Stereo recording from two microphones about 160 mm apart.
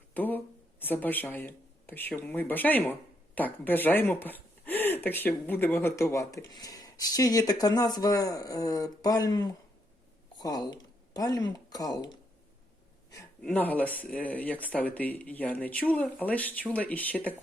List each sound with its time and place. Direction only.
0.1 s speech: 10° left (ahead or behind)
13.4 s speech: 10° left (ahead or behind)